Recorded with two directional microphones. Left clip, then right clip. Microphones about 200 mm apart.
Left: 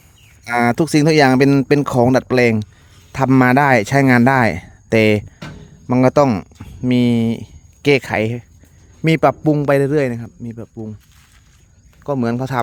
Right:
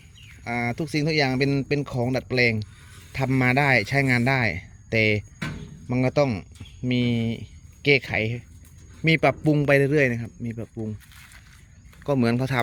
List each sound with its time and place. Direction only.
0.5 s a man's voice: 50° left (ahead or behind); by 10.9 s 15° left (ahead or behind)
12.0 s a man's voice: 15° left (ahead or behind)